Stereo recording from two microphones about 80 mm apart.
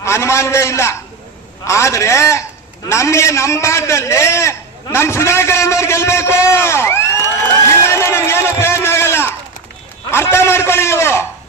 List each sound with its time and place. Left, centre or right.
0.0 s a man's voice: left
7.9 s music: left
10.1 s a man's voice: left